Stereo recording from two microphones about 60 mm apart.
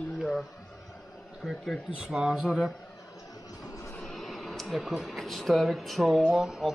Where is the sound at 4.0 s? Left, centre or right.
Centre.